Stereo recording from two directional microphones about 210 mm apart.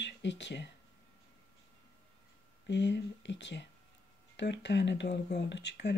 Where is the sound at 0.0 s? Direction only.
55° left (ahead or behind).